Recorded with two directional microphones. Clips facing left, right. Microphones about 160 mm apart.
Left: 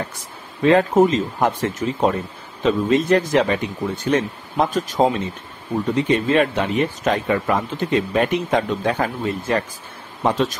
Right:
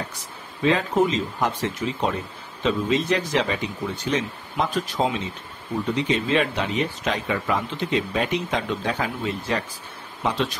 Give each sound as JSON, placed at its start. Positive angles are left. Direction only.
{"t": 0.6, "sound": "speech", "side_deg": 50}